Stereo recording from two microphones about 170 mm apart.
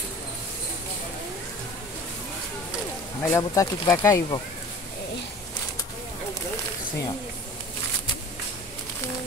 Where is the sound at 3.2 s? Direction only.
15° left (ahead or behind).